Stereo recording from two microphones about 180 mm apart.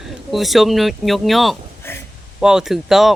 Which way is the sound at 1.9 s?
15° left (ahead or behind).